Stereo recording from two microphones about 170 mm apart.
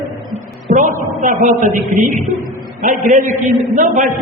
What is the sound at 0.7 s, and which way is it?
A man's voice, 50° right (ahead or behind).